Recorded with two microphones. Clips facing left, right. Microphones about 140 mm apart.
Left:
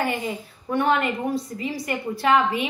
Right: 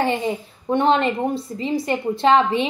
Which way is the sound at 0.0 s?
25° right (ahead or behind).